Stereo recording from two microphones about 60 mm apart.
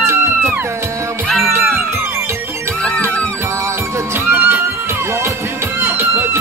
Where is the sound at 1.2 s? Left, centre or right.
Centre.